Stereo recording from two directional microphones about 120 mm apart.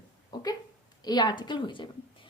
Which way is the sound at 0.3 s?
35° left (ahead or behind).